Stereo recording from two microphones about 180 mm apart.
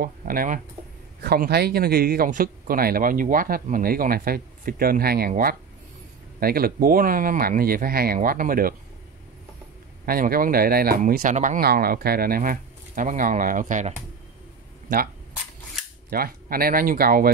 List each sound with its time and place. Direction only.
0.0 s speech: 55° right (ahead or behind)
1.2 s speech: 60° right (ahead or behind)
10.0 s speech: 55° right (ahead or behind)
16.1 s speech: 55° right (ahead or behind)